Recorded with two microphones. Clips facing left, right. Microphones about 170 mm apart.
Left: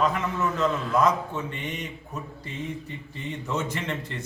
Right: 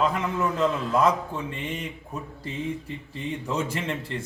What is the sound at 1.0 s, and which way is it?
Speech, 30° right (ahead or behind).